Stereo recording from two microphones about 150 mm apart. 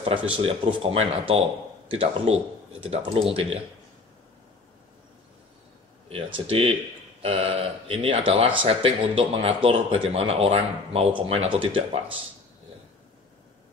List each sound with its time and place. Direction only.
0.4 s speech: 40° right (ahead or behind)
6.0 s speech: 40° right (ahead or behind)